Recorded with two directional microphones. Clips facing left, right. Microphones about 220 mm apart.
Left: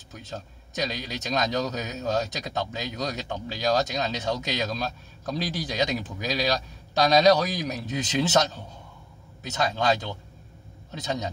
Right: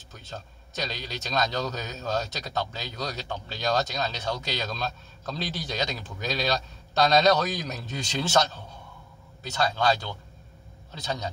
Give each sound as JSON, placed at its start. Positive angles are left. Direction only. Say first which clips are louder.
{"t": 0.1, "sound": "a man's voice", "louder": "left 3 dB", "side_deg": 15}